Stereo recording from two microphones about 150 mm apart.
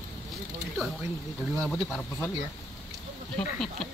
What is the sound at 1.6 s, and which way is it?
Speech, 10° left (ahead or behind).